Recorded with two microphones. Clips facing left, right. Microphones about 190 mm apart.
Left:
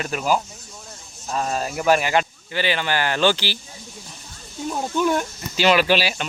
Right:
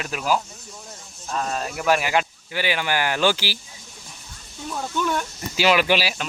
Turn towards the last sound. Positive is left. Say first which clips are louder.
# left 2 dB
turn(degrees=0)  # may be behind; listen again after turning